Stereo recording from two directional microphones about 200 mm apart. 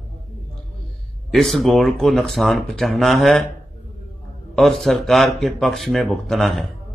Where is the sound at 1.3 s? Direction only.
Centre (ahead or behind).